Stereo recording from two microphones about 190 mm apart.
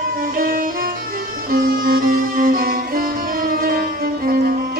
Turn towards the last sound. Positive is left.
turn(degrees=-50)  # may be behind; listen again after turning